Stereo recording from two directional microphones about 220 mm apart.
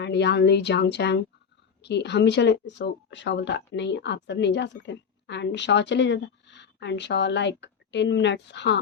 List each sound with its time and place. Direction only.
0.0 s speech: 50° left (ahead or behind)